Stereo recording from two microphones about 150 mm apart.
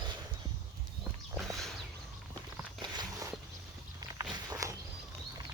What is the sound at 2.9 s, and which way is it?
Walk, 25° right (ahead or behind).